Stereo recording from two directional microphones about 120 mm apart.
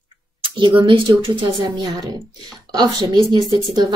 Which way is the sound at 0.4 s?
45° right (ahead or behind).